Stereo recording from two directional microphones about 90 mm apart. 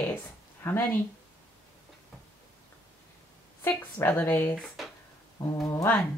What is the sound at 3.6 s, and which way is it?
Speech, 25° left (ahead or behind).